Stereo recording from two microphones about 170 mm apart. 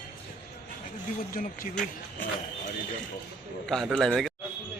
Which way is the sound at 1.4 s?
55° left (ahead or behind).